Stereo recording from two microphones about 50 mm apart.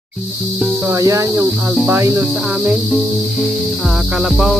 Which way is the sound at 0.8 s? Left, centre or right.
Right.